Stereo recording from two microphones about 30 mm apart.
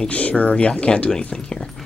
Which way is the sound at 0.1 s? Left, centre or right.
Left.